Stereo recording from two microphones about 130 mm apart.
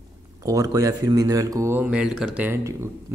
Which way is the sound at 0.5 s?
25° right (ahead or behind).